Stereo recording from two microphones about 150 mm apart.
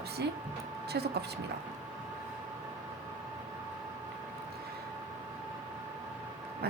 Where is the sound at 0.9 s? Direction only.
90° right.